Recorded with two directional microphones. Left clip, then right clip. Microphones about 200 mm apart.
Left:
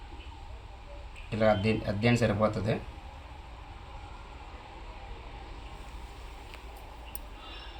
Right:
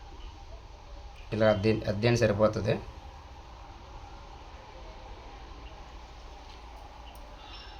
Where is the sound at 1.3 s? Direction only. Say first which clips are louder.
Right 1 dB; 50° right (ahead or behind).